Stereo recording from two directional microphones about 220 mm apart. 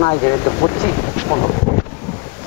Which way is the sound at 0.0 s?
20° left (ahead or behind).